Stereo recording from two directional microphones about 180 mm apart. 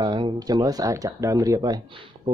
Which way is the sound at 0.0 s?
25° right (ahead or behind).